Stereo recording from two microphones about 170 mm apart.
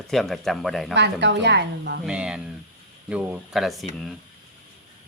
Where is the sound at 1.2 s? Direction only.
90° right.